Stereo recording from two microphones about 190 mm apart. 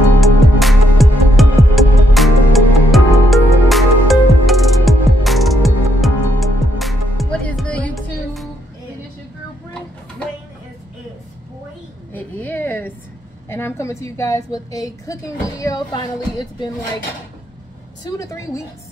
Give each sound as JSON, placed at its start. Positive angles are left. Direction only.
{"t": 0.2, "sound": "music", "side_deg": 0}
{"t": 12.1, "sound": "a sound", "side_deg": 10}
{"t": 13.5, "sound": "a woman's voice", "side_deg": 10}
{"t": 18.0, "sound": "a woman's voice", "side_deg": 15}